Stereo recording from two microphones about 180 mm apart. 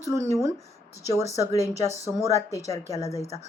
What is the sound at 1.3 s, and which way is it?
A woman's voice, 20° left (ahead or behind).